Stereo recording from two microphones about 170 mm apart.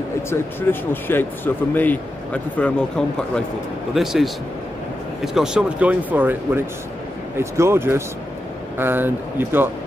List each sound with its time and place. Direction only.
0.3 s a man's voice: 10° left (ahead or behind); by 9.7 s 10° right (ahead or behind)